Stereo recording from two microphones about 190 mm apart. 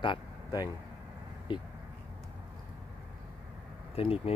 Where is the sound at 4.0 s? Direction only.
30° left (ahead or behind).